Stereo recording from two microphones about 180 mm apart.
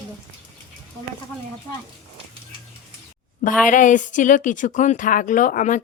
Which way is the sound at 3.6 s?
45° left (ahead or behind).